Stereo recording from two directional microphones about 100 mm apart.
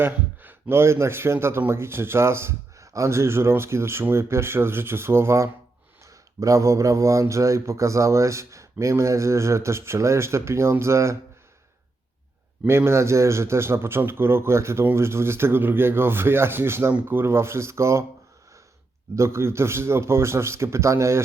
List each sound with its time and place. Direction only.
0.0 s speech: 20° right (ahead or behind)
12.6 s speech: 25° right (ahead or behind)
19.1 s speech: 25° right (ahead or behind)